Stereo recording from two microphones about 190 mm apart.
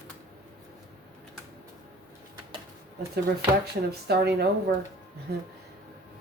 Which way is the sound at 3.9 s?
60° right (ahead or behind).